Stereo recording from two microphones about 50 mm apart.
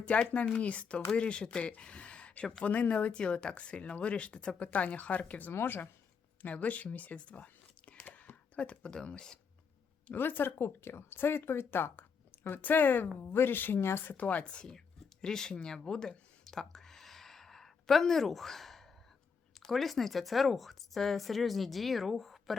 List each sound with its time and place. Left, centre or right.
0.0 s speech: left
5.6 s speech: left
6.4 s speech: left; by 9.4 s centre
10.2 s speech: left
14.2 s speech: left
14.4 s speech: centre
15.5 s a sound: centre
19.6 s a woman's voice: centre